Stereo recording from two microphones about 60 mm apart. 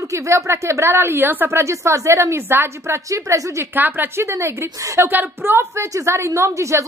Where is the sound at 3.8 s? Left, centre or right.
Right.